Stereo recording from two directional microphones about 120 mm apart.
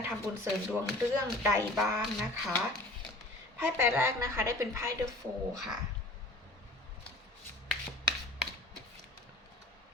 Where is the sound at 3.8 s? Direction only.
20° right (ahead or behind).